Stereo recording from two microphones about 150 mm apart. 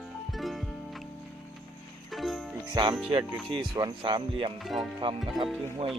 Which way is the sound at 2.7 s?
30° right (ahead or behind).